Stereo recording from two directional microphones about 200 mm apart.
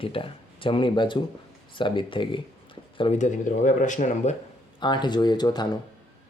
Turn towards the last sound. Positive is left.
turn(degrees=20)  # may be behind; listen again after turning